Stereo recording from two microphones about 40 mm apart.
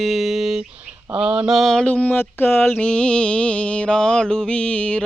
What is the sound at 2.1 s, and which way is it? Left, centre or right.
Speech, left.